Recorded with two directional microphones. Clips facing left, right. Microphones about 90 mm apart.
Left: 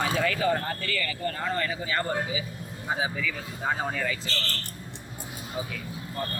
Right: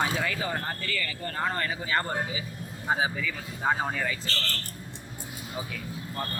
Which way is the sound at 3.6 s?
10° right (ahead or behind).